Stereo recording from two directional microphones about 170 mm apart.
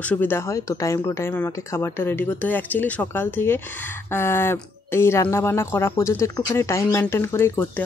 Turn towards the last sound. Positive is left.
turn(degrees=15)  # may be behind; listen again after turning